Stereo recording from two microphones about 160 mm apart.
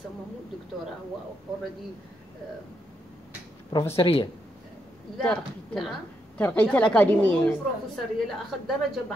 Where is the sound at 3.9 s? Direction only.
35° left (ahead or behind).